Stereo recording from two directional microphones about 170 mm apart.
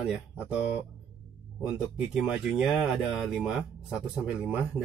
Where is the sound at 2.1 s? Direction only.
5° right (ahead or behind).